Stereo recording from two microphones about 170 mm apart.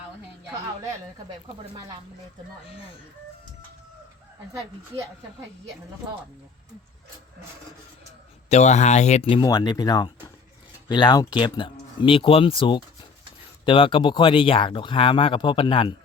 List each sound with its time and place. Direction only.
8.4 s speech: 40° left (ahead or behind)
9.4 s speech: 25° left (ahead or behind)